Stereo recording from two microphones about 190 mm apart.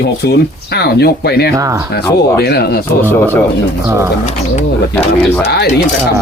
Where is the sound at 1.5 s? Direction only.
15° right (ahead or behind).